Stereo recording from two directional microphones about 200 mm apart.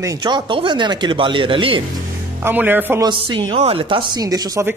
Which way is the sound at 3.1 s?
25° right (ahead or behind).